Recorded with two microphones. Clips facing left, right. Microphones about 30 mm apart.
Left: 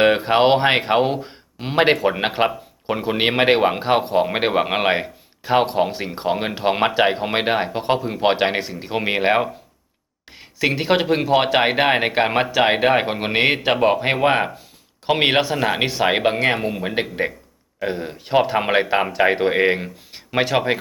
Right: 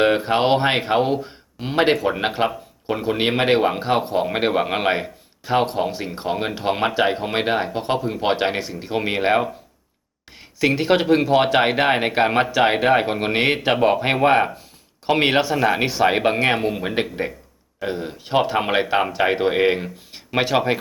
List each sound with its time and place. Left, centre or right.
0.0 s speech: centre
16.3 s speech: centre
16.6 s speech: centre
16.9 s speech: centre